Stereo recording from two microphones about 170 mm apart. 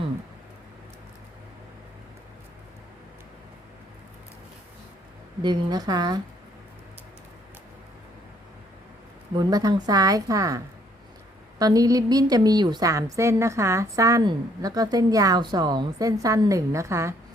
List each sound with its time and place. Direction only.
5.4 s a woman's voice: 25° right (ahead or behind)
9.4 s a woman's voice: 25° right (ahead or behind)
11.6 s a woman's voice: 20° right (ahead or behind)